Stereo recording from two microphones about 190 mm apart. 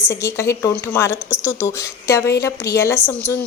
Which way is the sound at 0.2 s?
15° left (ahead or behind).